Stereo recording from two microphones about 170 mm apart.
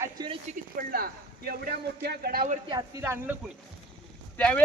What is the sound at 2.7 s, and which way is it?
Speech, 20° right (ahead or behind).